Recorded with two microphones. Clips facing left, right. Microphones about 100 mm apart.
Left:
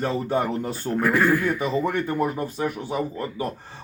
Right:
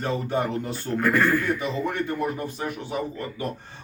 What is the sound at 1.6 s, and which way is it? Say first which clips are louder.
Speech: left 3 dB; 45° left (ahead or behind).